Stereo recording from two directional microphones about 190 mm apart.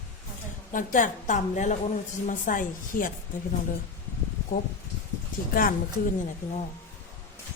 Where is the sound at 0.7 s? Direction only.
45° left (ahead or behind).